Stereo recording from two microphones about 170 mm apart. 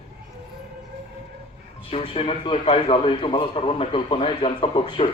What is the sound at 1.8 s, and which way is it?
A man's voice, 35° left (ahead or behind).